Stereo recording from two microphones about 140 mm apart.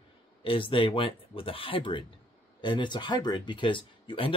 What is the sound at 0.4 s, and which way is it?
Speech, 40° left (ahead or behind).